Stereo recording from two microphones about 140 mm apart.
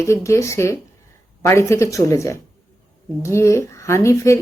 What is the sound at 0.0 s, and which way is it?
Speech, 20° left (ahead or behind).